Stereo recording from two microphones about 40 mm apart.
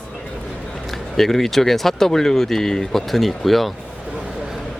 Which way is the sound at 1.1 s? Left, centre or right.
Centre.